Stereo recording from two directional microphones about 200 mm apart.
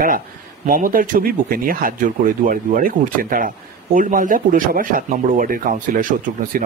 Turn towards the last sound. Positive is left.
turn(degrees=-40)  # may be behind; listen again after turning